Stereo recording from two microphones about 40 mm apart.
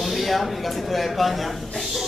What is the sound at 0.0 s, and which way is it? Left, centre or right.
A man's voice, centre.